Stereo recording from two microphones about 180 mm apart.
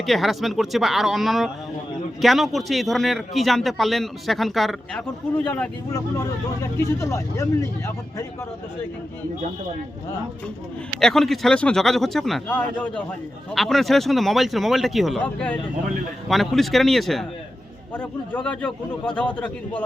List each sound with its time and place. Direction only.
0.0 s speech: centre (ahead or behind)
5.5 s speech: 15° left (ahead or behind)
11.0 s speech: centre (ahead or behind)